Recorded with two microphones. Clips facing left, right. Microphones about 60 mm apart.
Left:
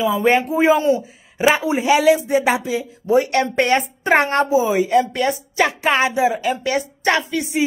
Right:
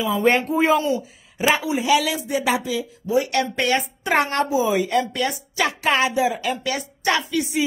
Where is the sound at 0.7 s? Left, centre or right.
Left.